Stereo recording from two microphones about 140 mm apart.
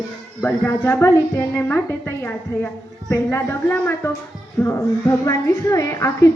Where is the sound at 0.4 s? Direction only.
15° left (ahead or behind).